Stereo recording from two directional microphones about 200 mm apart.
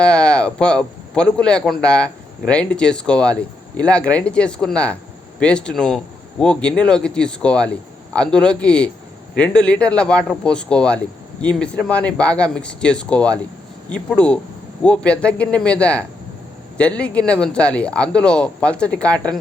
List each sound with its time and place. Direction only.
0.0 s speech: 5° left (ahead or behind)